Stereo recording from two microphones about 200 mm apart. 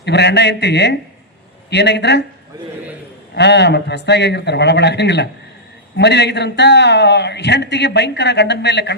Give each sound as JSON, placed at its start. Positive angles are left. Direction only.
{"t": 0.0, "sound": "a man's voice", "side_deg": 60}
{"t": 3.3, "sound": "a man's voice", "side_deg": 60}